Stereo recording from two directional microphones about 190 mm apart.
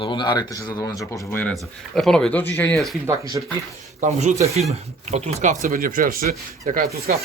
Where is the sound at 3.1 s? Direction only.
15° right (ahead or behind).